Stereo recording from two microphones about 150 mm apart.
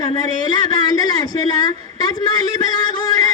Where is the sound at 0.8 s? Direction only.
25° left (ahead or behind).